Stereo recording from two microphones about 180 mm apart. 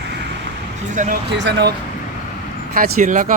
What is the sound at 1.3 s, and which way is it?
Speech, 70° right (ahead or behind).